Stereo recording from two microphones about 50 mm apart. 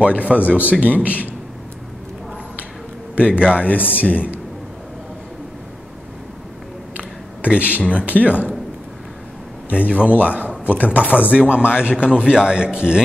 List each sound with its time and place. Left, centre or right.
0.0 s speech: right
3.2 s speech: right
3.8 s speech: left
7.4 s speech: right
9.7 s a man's voice: right
10.6 s a man's voice: left
10.9 s a man's voice: right